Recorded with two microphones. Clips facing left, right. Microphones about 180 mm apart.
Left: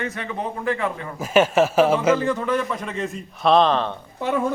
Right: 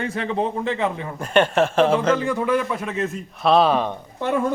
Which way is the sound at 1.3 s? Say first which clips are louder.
Left 1 dB; 5° left (ahead or behind).